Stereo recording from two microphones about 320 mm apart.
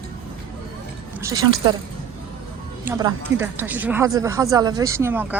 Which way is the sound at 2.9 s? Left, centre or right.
Centre.